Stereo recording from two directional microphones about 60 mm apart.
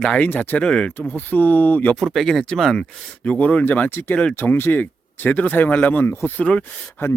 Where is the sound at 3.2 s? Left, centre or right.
Left.